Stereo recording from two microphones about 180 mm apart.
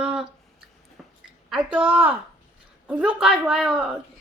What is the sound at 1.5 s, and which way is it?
A woman's voice, 5° right (ahead or behind).